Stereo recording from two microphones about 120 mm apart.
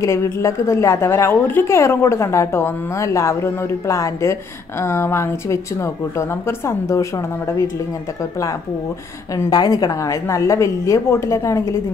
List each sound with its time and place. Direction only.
0.0 s a woman's voice: 25° left (ahead or behind)
9.5 s a woman's voice: 35° left (ahead or behind)